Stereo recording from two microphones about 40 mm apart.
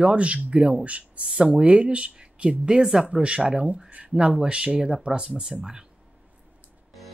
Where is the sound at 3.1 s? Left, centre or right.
Right.